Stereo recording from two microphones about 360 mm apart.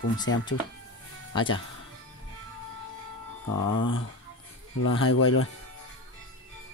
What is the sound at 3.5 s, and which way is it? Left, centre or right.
Speech, left.